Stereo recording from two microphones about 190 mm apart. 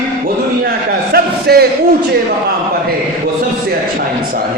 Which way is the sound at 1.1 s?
55° right (ahead or behind).